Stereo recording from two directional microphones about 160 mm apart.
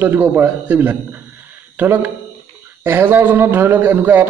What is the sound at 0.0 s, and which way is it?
A man's voice, 15° right (ahead or behind).